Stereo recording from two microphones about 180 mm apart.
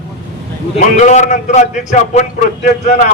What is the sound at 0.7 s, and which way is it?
A man's voice, 40° left (ahead or behind).